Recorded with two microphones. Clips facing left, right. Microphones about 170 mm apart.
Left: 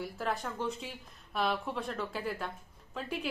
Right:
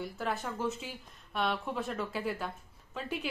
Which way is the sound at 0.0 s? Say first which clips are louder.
Even; centre (ahead or behind).